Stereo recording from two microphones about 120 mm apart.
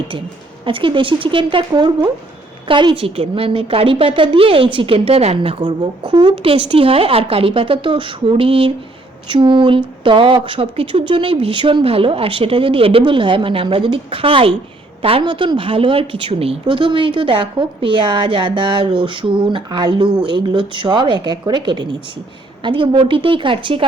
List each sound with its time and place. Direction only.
0.6 s a woman's voice: 45° right (ahead or behind)